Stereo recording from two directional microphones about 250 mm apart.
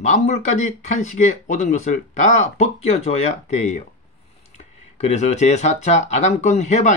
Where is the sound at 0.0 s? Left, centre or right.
Left.